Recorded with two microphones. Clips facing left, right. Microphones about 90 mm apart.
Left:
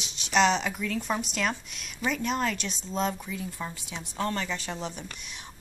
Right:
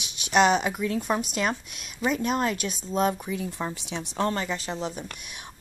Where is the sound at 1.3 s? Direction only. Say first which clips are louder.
Right 3 dB; 40° right (ahead or behind).